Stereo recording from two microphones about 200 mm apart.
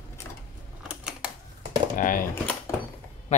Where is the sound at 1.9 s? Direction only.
45° left (ahead or behind).